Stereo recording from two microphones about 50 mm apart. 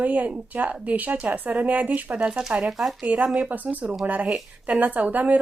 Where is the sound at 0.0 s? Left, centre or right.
Right.